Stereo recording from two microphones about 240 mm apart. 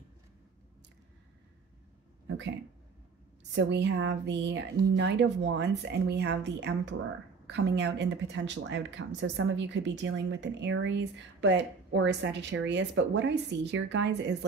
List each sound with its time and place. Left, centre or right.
2.2 s speech: right
3.5 s speech: right